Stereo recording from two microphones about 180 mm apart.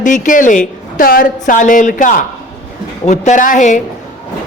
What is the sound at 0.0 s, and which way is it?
A woman's voice, 45° left (ahead or behind).